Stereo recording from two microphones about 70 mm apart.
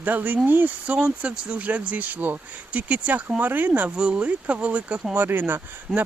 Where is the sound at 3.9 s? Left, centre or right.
Centre.